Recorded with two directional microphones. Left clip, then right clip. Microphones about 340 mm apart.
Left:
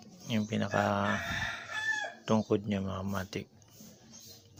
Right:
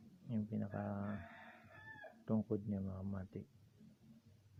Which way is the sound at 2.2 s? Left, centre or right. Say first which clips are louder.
Left 10 dB; right.